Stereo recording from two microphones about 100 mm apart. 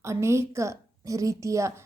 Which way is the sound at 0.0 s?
30° right (ahead or behind).